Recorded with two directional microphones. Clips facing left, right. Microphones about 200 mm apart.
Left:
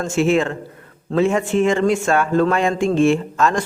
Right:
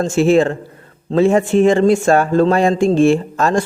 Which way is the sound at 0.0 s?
35° right (ahead or behind).